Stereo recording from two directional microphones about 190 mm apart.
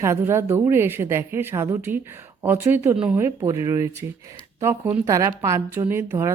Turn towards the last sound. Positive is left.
turn(degrees=-15)  # may be behind; listen again after turning